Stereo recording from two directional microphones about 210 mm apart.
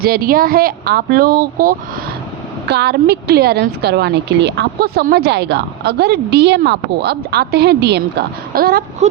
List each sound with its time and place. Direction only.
0.0 s a woman's voice: 45° right (ahead or behind)